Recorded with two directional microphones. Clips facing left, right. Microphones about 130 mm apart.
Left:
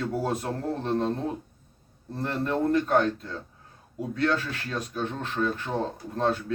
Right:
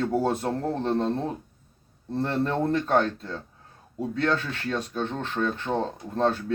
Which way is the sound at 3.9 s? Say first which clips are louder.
Right 1 dB; 30° right (ahead or behind).